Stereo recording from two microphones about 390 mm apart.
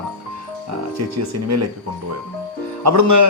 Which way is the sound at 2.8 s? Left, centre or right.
Right.